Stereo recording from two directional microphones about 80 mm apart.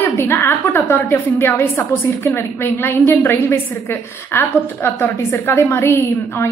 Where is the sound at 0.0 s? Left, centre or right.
Left.